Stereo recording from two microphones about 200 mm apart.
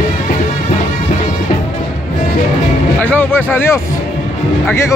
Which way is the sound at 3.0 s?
10° left (ahead or behind).